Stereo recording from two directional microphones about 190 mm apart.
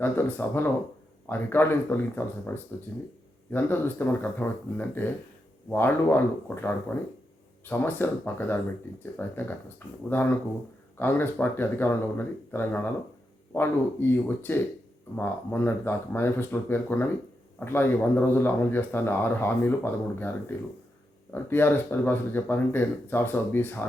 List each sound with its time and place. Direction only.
0.0 s speech: 10° left (ahead or behind)
21.3 s speech: 10° left (ahead or behind)